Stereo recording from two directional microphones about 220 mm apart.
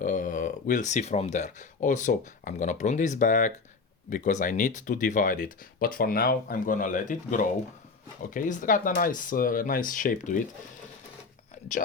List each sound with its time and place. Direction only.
0.0 s speech: 35° left (ahead or behind)